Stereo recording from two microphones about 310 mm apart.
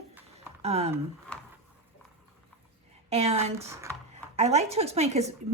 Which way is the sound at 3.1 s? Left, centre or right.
Centre.